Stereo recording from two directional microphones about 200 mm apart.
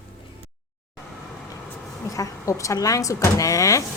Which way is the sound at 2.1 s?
15° left (ahead or behind).